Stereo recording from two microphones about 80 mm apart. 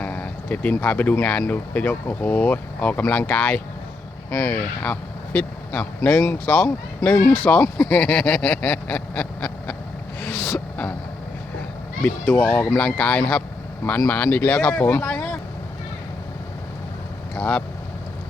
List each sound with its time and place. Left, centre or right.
0.0 s a sound: centre
1.2 s speech: centre; by 7.3 s left
7.8 s speech: centre
10.2 s a sound: left
12.0 s speech: left
17.3 s speech: centre